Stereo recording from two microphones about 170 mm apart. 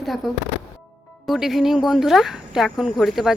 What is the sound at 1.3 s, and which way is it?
Speech, centre (ahead or behind).